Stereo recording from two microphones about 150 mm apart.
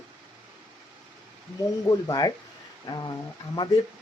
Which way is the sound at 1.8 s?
25° left (ahead or behind).